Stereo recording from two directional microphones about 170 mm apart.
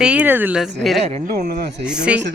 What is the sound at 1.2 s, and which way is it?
Speech, 60° right (ahead or behind).